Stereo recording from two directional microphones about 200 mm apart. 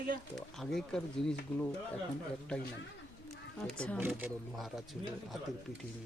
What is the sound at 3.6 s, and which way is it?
Speech, 5° left (ahead or behind).